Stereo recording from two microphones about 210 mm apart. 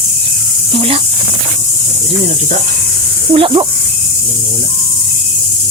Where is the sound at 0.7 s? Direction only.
25° right (ahead or behind).